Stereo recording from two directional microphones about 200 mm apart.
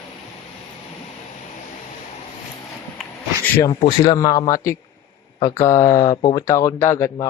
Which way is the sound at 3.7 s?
20° left (ahead or behind).